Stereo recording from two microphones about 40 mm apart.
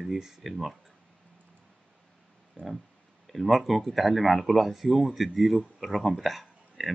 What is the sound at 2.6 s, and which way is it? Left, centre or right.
Speech, left.